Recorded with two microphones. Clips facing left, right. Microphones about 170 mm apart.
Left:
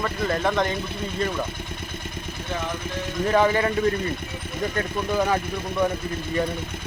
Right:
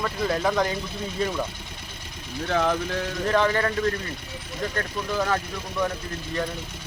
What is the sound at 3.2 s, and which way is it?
Speech, 10° left (ahead or behind).